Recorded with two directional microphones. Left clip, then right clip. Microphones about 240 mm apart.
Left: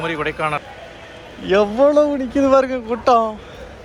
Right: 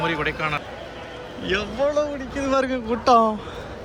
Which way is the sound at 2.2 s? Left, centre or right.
Centre.